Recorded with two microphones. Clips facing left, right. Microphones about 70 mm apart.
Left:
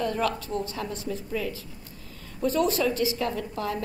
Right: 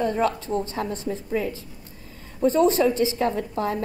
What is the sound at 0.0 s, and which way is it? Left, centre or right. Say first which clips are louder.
A woman's voice: right 4 dB; right.